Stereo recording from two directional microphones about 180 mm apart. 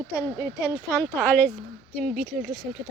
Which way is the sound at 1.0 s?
10° left (ahead or behind).